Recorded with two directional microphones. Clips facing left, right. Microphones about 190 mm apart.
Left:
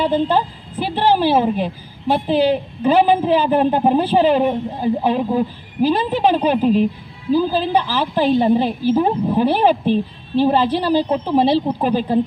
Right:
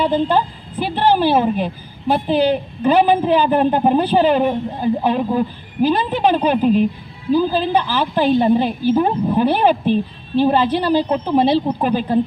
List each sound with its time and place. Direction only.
0.0 s a woman's voice: centre (ahead or behind)
11.8 s speech: 30° left (ahead or behind)